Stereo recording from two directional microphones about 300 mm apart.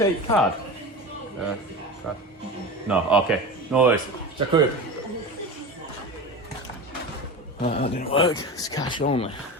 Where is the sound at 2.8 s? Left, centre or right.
Centre.